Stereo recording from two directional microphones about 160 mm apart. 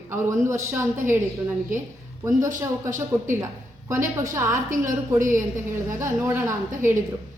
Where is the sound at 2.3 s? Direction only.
20° right (ahead or behind).